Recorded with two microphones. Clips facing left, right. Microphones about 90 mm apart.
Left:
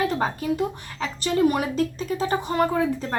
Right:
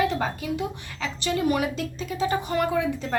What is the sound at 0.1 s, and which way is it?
A woman's voice, 40° left (ahead or behind).